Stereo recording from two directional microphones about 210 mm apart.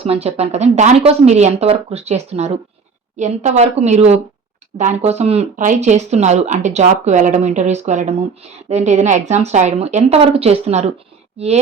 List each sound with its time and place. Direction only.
0.0 s speech: 30° right (ahead or behind)